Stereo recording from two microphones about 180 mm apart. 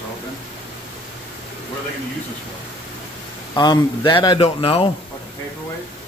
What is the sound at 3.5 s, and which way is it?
Speech, 20° left (ahead or behind).